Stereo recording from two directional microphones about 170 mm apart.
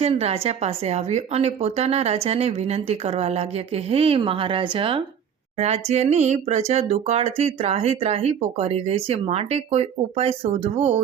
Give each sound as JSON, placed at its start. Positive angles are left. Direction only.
{"t": 0.0, "sound": "speech", "side_deg": -35}